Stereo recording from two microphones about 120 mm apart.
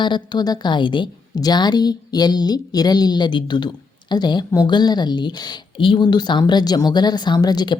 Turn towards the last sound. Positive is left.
turn(degrees=35)  # may be behind; listen again after turning